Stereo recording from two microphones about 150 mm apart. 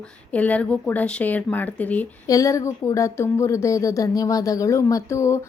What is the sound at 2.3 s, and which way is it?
Speech, 20° left (ahead or behind).